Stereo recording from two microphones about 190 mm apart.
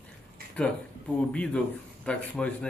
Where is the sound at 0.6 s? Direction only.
5° left (ahead or behind).